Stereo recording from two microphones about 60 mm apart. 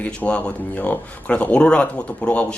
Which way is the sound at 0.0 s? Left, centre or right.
Left.